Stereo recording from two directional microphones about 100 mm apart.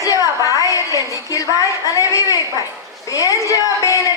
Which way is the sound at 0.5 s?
35° left (ahead or behind).